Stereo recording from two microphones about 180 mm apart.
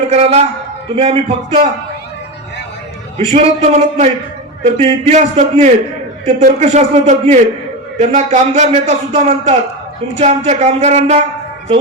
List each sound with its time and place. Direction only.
0.1 s a man's voice: 35° right (ahead or behind)
3.2 s a man's voice: 35° right (ahead or behind)